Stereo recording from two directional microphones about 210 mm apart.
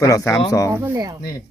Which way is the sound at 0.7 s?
15° right (ahead or behind).